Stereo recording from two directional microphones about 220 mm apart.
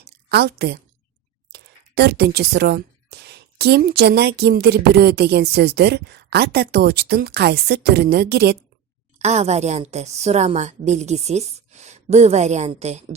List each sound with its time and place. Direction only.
0.0 s a sound: 50° right (ahead or behind)
1.5 s a woman's voice: 50° right (ahead or behind)
9.1 s a woman's voice: 30° right (ahead or behind)